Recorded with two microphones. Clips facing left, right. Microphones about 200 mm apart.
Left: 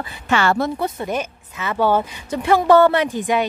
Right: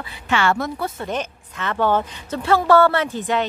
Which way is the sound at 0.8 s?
10° left (ahead or behind).